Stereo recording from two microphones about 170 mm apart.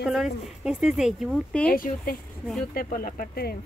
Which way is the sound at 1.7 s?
55° left (ahead or behind).